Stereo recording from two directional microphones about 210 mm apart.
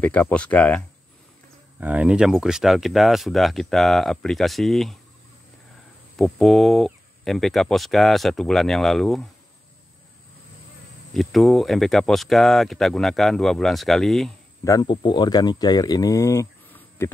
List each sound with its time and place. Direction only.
0.0 s speech: 5° left (ahead or behind)
1.8 s speech: 5° right (ahead or behind)
6.1 s speech: centre (ahead or behind)
11.1 s speech: centre (ahead or behind)
14.6 s speech: 20° left (ahead or behind)